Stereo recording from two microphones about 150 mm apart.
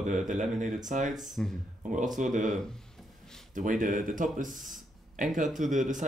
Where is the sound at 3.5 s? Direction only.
65° right (ahead or behind).